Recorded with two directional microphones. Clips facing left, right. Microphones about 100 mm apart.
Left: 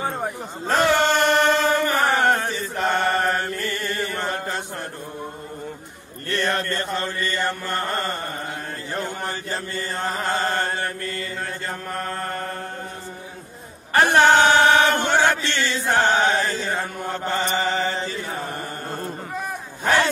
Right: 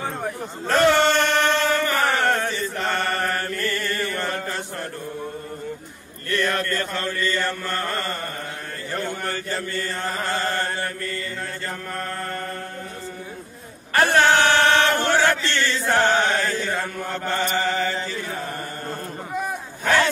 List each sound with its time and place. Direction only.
0.0 s chant: 15° left (ahead or behind)
6.3 s chant: 30° left (ahead or behind)
13.9 s chant: 20° left (ahead or behind)